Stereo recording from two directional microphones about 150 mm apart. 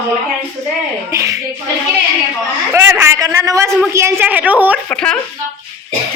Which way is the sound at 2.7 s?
20° right (ahead or behind).